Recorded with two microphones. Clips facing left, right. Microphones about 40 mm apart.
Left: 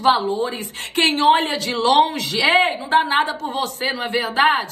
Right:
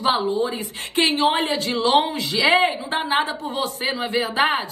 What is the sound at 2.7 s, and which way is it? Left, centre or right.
Speech, left.